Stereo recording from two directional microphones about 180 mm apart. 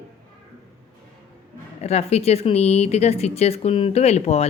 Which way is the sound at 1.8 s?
35° left (ahead or behind).